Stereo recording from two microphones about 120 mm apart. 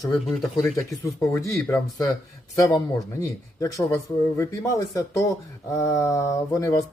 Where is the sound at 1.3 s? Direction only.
20° left (ahead or behind).